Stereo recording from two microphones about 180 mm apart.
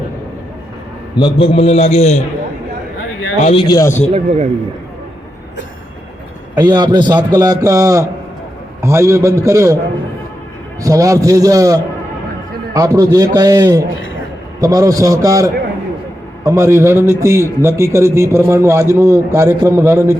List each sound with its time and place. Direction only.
1.1 s a man's voice: 30° left (ahead or behind)
3.4 s speech: 30° left (ahead or behind)
4.1 s speech: 40° right (ahead or behind)
6.6 s a man's voice: 25° right (ahead or behind)
10.8 s a man's voice: 20° right (ahead or behind)